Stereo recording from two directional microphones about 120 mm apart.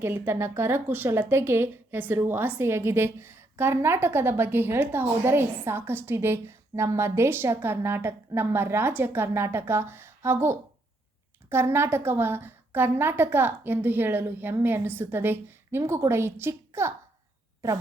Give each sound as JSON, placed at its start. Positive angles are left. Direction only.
{"t": 0.0, "sound": "a woman's voice", "side_deg": -20}